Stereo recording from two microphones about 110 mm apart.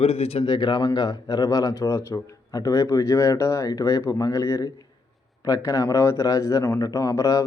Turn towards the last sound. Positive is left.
turn(degrees=30)  # may be behind; listen again after turning